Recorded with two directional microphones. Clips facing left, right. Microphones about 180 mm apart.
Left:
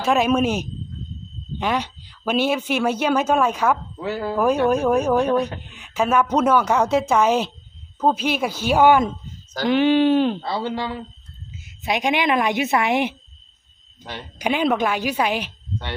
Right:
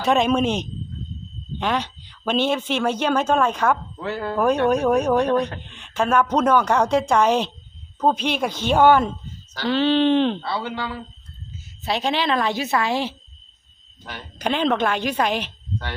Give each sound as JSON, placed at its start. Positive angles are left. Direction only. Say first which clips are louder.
{"t": 0.0, "sound": "a man's voice", "louder": "even", "side_deg": 5}
{"t": 10.4, "sound": "speech", "louder": "left 2 dB", "side_deg": 35}
{"t": 11.8, "sound": "speech", "louder": "left 2 dB", "side_deg": 15}
{"t": 14.3, "sound": "speech", "louder": "left 1 dB", "side_deg": 10}